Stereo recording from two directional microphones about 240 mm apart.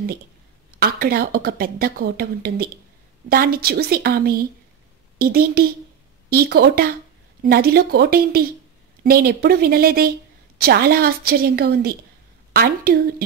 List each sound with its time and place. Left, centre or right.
0.7 s a woman's voice: right